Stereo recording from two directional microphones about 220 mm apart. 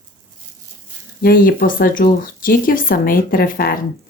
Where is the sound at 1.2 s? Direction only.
40° left (ahead or behind).